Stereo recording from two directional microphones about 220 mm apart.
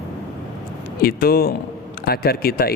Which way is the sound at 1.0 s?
45° left (ahead or behind).